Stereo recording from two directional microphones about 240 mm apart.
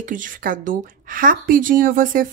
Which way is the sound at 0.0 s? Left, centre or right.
Right.